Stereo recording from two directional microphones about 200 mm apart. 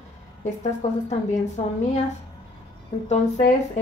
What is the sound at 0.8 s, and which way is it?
Speech, 35° left (ahead or behind).